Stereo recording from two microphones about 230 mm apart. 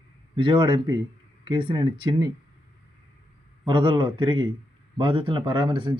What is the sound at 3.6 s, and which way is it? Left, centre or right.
Speech, right.